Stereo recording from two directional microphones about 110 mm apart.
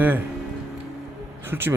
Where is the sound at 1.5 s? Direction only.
20° right (ahead or behind).